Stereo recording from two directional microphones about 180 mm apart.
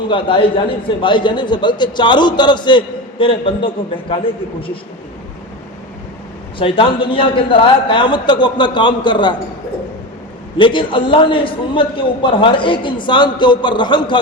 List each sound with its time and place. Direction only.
0.1 s a man's voice: 30° left (ahead or behind)
6.6 s a man's voice: 30° left (ahead or behind)
10.6 s a man's voice: 25° left (ahead or behind)